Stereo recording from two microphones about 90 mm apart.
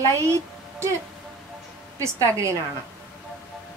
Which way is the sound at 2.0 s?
35° right (ahead or behind).